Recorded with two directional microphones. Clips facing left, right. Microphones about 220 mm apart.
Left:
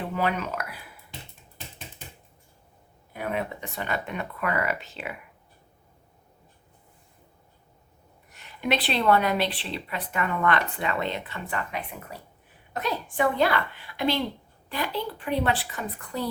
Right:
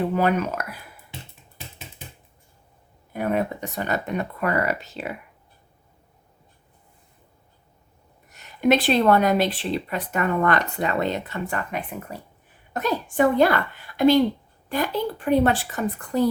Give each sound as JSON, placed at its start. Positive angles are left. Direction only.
{"t": 0.2, "sound": "speech", "side_deg": -45}
{"t": 3.1, "sound": "speech", "side_deg": -45}
{"t": 8.3, "sound": "speech", "side_deg": -45}